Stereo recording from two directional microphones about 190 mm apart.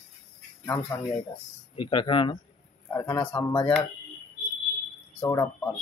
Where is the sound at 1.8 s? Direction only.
25° left (ahead or behind).